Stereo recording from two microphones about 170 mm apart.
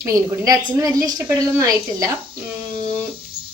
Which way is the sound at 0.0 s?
20° right (ahead or behind).